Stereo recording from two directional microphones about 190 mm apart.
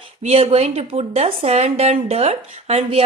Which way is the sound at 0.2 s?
35° right (ahead or behind).